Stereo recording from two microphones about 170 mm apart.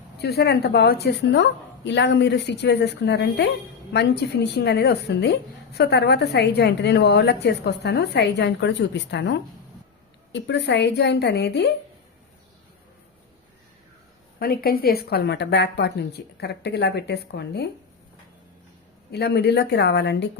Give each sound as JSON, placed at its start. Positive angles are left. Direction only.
{"t": 0.2, "sound": "a woman's voice", "side_deg": 70}
{"t": 14.3, "sound": "a woman's voice", "side_deg": 60}
{"t": 19.1, "sound": "a woman's voice", "side_deg": 75}